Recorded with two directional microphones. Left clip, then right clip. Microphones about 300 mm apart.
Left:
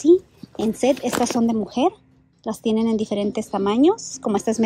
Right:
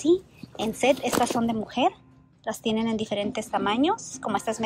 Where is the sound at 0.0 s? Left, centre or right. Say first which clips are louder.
Left 7 dB; centre.